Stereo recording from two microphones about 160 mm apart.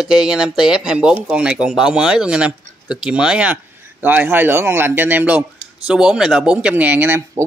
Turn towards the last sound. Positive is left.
turn(degrees=-15)  # may be behind; listen again after turning